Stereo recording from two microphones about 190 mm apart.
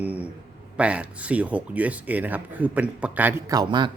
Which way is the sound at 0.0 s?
10° right (ahead or behind).